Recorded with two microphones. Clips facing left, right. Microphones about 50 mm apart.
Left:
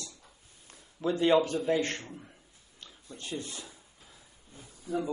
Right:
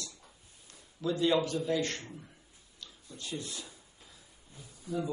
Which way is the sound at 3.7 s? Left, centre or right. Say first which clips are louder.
Left 1 dB; left.